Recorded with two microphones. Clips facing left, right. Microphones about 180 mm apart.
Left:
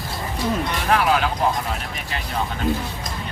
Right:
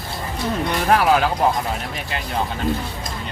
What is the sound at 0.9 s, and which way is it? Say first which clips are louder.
Speech: right 3 dB; 40° right (ahead or behind).